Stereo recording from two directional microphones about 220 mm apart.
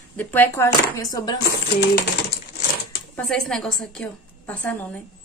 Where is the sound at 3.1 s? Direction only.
5° left (ahead or behind).